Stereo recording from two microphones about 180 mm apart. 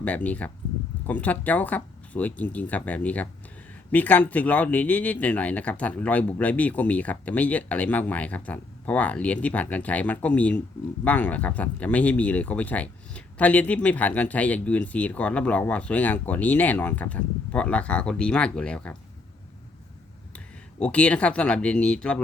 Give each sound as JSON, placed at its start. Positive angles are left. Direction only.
{"t": 0.0, "sound": "speech", "side_deg": 10}
{"t": 20.7, "sound": "speech", "side_deg": 5}